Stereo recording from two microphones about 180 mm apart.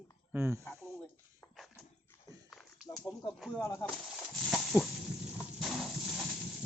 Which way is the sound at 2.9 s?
20° left (ahead or behind).